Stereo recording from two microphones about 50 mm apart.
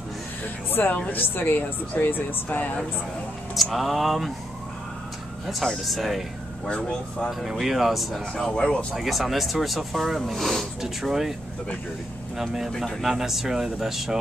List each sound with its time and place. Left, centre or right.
0.7 s music: left
1.1 s speech: left
3.7 s speech: centre
5.9 s speech: centre
6.6 s speech: centre
7.2 s speech: centre
8.9 s speech: centre
12.4 s speech: centre